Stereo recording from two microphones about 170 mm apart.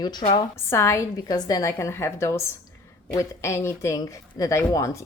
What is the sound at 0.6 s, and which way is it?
A woman's voice, 15° left (ahead or behind).